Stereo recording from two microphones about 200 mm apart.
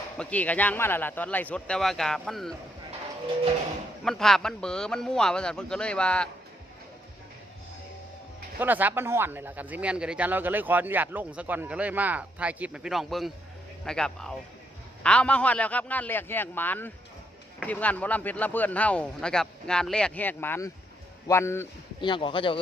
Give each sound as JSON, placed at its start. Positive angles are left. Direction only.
{"t": 0.2, "sound": "speech", "side_deg": 5}
{"t": 4.0, "sound": "a man's voice", "side_deg": 0}
{"t": 8.5, "sound": "a man's voice", "side_deg": -10}
{"t": 22.1, "sound": "speech", "side_deg": 25}